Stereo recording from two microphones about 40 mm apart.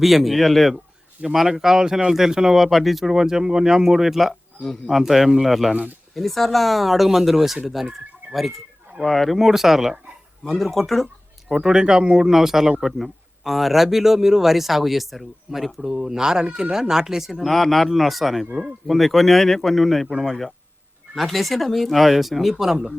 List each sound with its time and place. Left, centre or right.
0.0 s speech: centre
1.2 s speech: centre
2.6 s speech: centre
9.4 s speech: centre
10.4 s speech: centre
11.5 s speech: centre
15.8 s speech: centre